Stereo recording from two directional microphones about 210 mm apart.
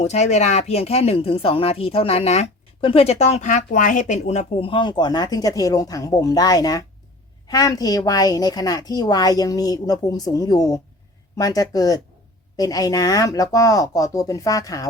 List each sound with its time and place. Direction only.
0.0 s a woman's voice: 35° left (ahead or behind); by 14.8 s 15° left (ahead or behind)